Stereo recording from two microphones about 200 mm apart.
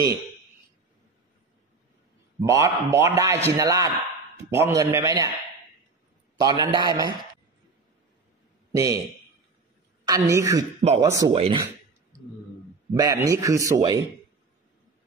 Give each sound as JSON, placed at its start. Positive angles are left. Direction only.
{"t": 2.4, "sound": "a man's voice", "side_deg": -15}
{"t": 6.4, "sound": "a man's voice", "side_deg": -20}
{"t": 8.7, "sound": "a man's voice", "side_deg": -15}
{"t": 10.0, "sound": "a man's voice", "side_deg": -15}
{"t": 12.9, "sound": "a man's voice", "side_deg": -15}